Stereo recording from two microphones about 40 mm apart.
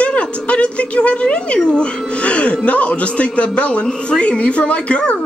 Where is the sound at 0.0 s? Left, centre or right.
Left.